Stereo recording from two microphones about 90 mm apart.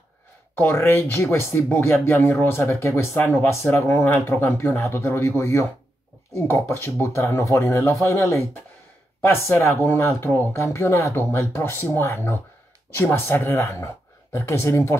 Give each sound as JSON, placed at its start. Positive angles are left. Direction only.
{"t": 0.6, "sound": "speech", "side_deg": 25}
{"t": 3.2, "sound": "speech", "side_deg": 20}